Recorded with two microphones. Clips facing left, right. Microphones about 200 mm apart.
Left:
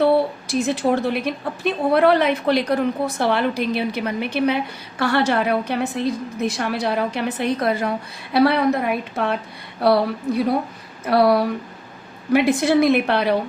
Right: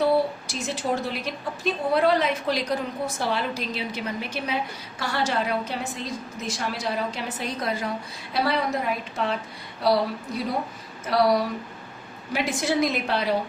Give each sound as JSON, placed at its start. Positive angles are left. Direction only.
{"t": 0.0, "sound": "a woman's voice", "side_deg": 60}